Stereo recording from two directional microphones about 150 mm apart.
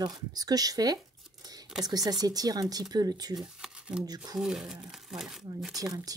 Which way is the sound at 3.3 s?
5° right (ahead or behind).